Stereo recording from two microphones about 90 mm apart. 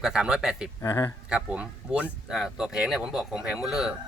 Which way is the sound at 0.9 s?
45° left (ahead or behind).